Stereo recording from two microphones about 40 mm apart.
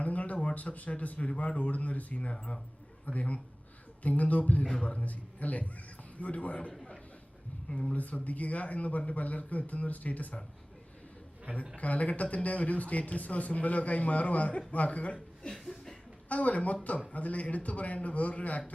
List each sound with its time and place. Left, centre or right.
0.0 s a sound: left
0.5 s a man's voice: left
7.8 s a man's voice: left
11.8 s a man's voice: left
15.4 s chuckle: centre
16.3 s a man's voice: left